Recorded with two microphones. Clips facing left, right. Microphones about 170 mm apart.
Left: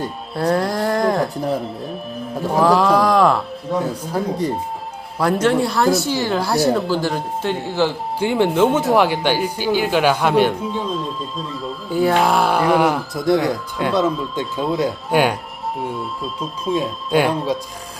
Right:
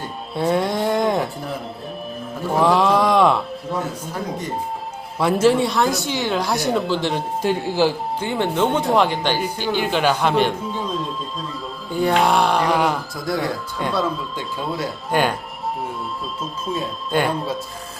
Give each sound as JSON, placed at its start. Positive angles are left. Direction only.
{"t": 0.3, "sound": "speech", "side_deg": 0}
{"t": 2.5, "sound": "speech", "side_deg": 0}
{"t": 4.0, "sound": "speech", "side_deg": 35}
{"t": 5.2, "sound": "speech", "side_deg": 0}
{"t": 7.4, "sound": "speech", "side_deg": -10}
{"t": 8.2, "sound": "speech", "side_deg": 10}